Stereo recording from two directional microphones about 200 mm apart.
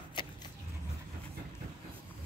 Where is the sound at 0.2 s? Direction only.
25° left (ahead or behind).